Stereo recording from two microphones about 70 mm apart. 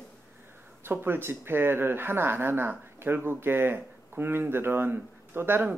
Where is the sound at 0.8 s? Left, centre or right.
Right.